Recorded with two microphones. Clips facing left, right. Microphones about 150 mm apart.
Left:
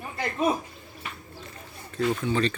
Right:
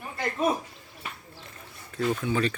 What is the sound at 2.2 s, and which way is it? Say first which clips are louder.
Speech: left 1 dB; 10° right (ahead or behind).